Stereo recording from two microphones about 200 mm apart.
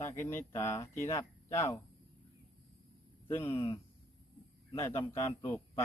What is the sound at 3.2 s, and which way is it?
Speech, 10° left (ahead or behind).